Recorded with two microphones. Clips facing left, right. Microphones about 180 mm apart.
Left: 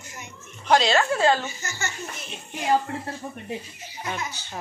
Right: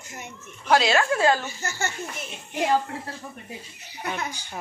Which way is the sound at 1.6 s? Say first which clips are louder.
Right 3 dB; 55° right (ahead or behind).